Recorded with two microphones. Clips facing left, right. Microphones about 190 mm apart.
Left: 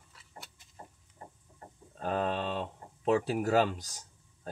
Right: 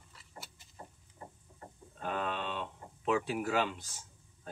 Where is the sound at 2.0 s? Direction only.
40° left (ahead or behind).